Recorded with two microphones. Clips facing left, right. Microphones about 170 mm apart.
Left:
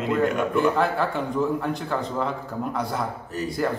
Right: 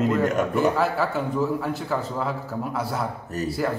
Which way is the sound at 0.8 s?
5° right (ahead or behind).